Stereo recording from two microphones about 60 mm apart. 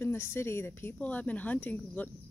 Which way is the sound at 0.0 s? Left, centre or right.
Left.